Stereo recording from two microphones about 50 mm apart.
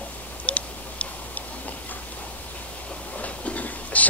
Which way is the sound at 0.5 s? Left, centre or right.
Left.